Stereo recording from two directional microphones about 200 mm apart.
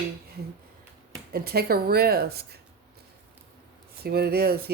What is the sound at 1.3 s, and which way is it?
Speech, 50° right (ahead or behind).